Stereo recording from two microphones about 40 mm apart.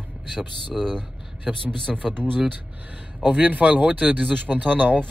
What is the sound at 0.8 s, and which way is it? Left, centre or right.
Speech, centre.